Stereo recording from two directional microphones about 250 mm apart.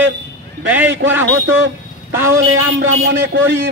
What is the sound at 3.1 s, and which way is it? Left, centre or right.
Speech, right.